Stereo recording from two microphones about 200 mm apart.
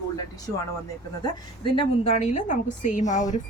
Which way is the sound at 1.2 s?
25° left (ahead or behind).